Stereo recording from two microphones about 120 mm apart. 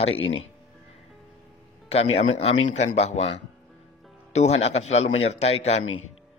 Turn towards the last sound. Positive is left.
turn(degrees=60)  # may be behind; listen again after turning